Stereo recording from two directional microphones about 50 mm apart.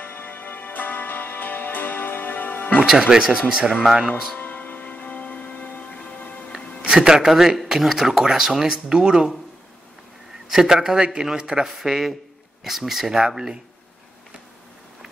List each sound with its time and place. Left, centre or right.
0.0 s music: left
2.8 s speech: centre
4.4 s music: left
6.9 s speech: centre
10.5 s speech: centre